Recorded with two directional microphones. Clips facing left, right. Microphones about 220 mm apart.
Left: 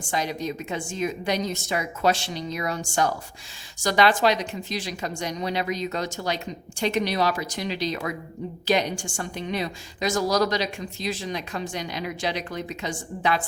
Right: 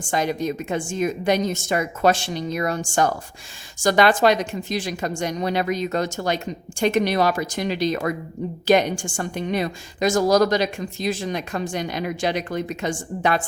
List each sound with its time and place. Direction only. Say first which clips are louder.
0.1 s a woman's voice: right 5 dB; 50° right (ahead or behind)